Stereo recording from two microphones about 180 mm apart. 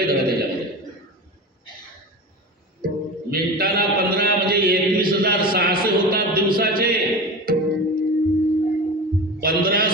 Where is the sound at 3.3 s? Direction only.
60° right (ahead or behind).